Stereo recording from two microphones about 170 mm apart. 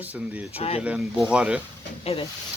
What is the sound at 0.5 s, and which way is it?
Speech, 35° left (ahead or behind).